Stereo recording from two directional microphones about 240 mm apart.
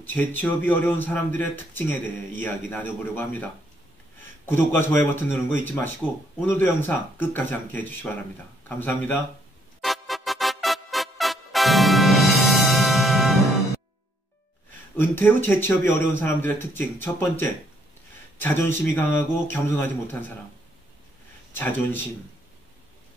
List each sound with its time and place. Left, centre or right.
0.0 s speech: centre
4.5 s speech: centre
9.8 s music: centre
15.0 s speech: centre
21.5 s speech: centre